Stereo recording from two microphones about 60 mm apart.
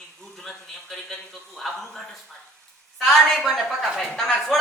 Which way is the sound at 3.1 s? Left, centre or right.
Centre.